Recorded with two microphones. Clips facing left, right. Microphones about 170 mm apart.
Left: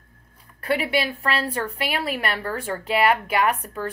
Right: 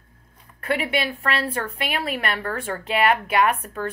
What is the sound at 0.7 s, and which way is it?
Speech, 35° left (ahead or behind).